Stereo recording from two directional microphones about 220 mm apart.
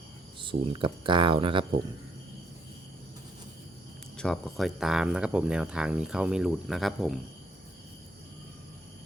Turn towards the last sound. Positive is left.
turn(degrees=0)  # may be behind; listen again after turning